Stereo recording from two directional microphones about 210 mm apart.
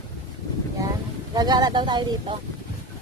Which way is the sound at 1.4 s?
20° right (ahead or behind).